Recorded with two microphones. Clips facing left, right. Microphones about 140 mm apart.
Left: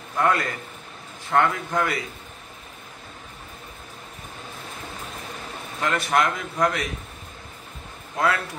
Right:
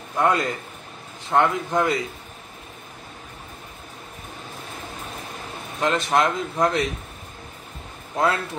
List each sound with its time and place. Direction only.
0.1 s a man's voice: 20° right (ahead or behind)
5.8 s a man's voice: 20° right (ahead or behind)
8.2 s a man's voice: 25° right (ahead or behind)